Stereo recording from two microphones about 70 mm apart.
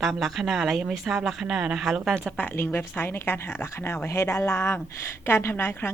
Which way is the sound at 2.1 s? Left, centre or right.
Centre.